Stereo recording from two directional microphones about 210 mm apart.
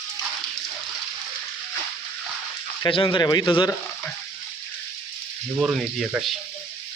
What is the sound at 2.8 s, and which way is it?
Speech, 20° left (ahead or behind).